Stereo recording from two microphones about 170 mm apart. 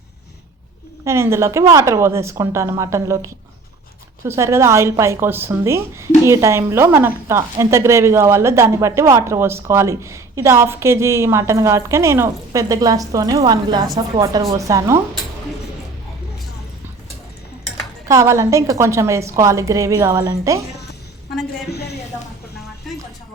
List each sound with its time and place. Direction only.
1.0 s a woman's voice: 15° right (ahead or behind)
18.1 s speech: 15° right (ahead or behind)
21.7 s a sound: 75° left (ahead or behind)